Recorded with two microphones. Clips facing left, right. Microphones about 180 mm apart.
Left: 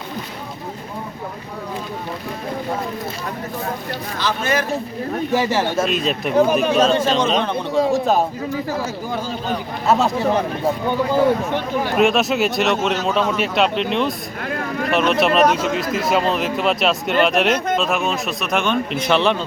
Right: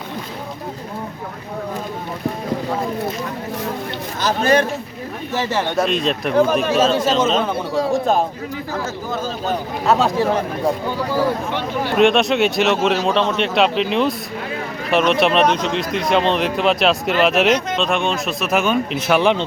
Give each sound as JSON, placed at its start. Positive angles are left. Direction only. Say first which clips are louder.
{"t": 4.2, "sound": "a man's voice", "louder": "right 5 dB", "side_deg": -40}
{"t": 5.3, "sound": "a man's voice", "louder": "left 1 dB", "side_deg": 10}
{"t": 9.8, "sound": "a man's voice", "louder": "right 1 dB", "side_deg": 0}
{"t": 11.9, "sound": "a man's voice", "louder": "right 3 dB", "side_deg": 0}